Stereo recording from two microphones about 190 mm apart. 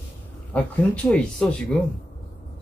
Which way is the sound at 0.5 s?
5° left (ahead or behind).